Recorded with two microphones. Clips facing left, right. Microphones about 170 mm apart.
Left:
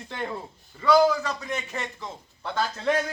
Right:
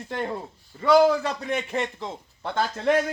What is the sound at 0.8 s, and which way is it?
Speech, 25° right (ahead or behind).